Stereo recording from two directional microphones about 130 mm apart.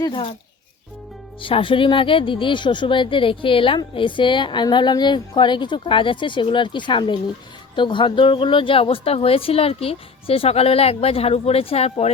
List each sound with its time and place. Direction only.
0.0 s speech: 40° left (ahead or behind)
1.4 s a woman's voice: 40° left (ahead or behind)